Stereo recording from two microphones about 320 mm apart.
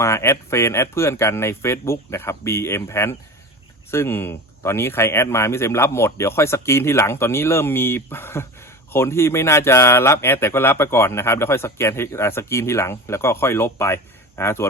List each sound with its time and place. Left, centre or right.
0.0 s speech: centre